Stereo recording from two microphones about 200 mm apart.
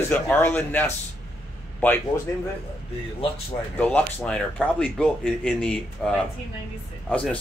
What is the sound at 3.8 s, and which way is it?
Speech, 5° left (ahead or behind).